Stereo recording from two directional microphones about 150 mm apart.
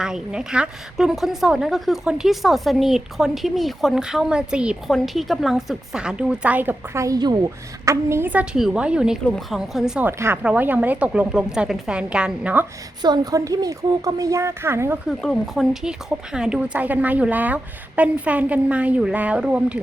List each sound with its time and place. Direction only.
0.0 s a woman's voice: 5° right (ahead or behind)
10.1 s speech: 15° right (ahead or behind)
13.0 s speech: 25° right (ahead or behind)
15.2 s speech: centre (ahead or behind)